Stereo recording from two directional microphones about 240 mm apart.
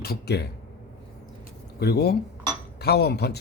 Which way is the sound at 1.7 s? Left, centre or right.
Left.